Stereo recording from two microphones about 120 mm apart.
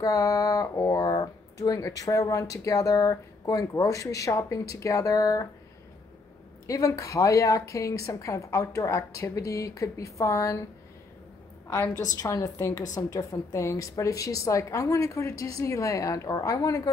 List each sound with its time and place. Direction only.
0.0 s speech: 25° left (ahead or behind)
6.7 s speech: 25° left (ahead or behind)
11.6 s a woman's voice: 25° left (ahead or behind)